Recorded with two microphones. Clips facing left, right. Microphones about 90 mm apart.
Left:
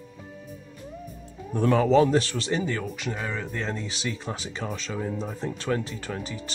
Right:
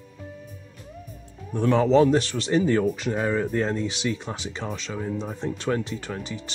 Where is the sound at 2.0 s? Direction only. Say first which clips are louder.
Right 2 dB; centre (ahead or behind).